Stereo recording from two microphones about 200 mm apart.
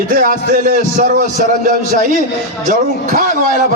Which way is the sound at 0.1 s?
45° right (ahead or behind).